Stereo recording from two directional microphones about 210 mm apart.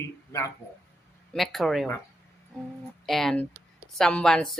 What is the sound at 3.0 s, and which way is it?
Speech, centre (ahead or behind).